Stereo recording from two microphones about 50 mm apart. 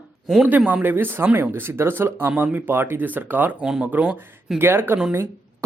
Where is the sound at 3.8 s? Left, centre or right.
Right.